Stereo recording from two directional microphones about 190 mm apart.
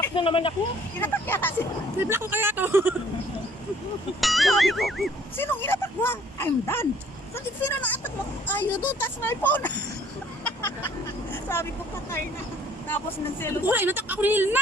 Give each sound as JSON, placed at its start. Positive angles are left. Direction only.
{"t": 0.1, "sound": "speech", "side_deg": 30}
{"t": 0.9, "sound": "speech", "side_deg": 10}
{"t": 2.0, "sound": "speech", "side_deg": -10}
{"t": 4.2, "sound": "speech", "side_deg": 0}
{"t": 5.4, "sound": "speech", "side_deg": 10}
{"t": 10.4, "sound": "a sound", "side_deg": 10}
{"t": 13.7, "sound": "speech", "side_deg": -10}